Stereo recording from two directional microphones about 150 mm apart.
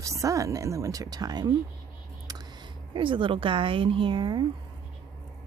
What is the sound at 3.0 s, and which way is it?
Speech, 35° right (ahead or behind).